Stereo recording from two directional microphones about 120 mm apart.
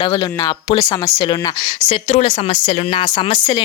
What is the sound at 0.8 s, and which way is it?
Speech, 30° left (ahead or behind).